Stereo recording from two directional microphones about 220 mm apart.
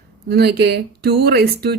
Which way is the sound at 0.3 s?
45° right (ahead or behind).